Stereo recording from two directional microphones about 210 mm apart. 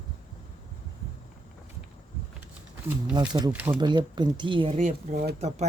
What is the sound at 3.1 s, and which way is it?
Speech, 20° right (ahead or behind).